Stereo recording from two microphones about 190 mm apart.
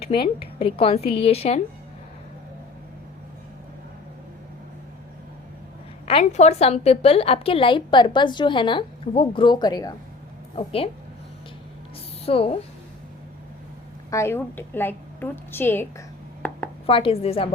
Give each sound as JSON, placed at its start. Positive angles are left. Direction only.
{"t": 0.2, "sound": "a woman's voice", "side_deg": 30}
{"t": 6.1, "sound": "a woman's voice", "side_deg": 35}
{"t": 10.5, "sound": "a woman's voice", "side_deg": 30}
{"t": 12.2, "sound": "a woman's voice", "side_deg": 30}
{"t": 14.1, "sound": "a woman's voice", "side_deg": 15}
{"t": 16.4, "sound": "a sound", "side_deg": 10}
{"t": 16.8, "sound": "a woman's voice", "side_deg": 30}